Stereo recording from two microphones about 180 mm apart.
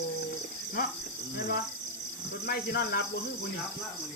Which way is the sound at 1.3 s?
60° left (ahead or behind).